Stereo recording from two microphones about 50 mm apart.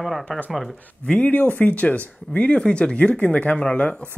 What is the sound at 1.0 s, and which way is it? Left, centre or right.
Speech, left.